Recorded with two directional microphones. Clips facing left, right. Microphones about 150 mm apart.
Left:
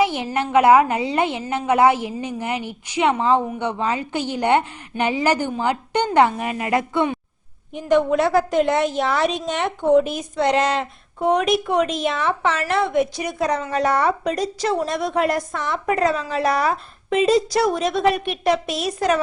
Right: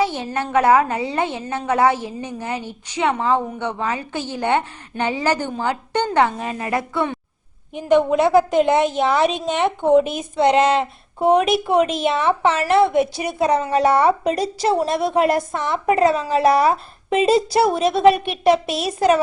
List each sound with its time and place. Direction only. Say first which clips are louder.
0.0 s a woman's voice: left 1 dB; 15° left (ahead or behind)
8.1 s a woman's voice: right 3 dB; 25° right (ahead or behind)
9.2 s a woman's voice: right 2 dB; centre (ahead or behind)
10.2 s a woman's voice: right 3 dB; 25° right (ahead or behind)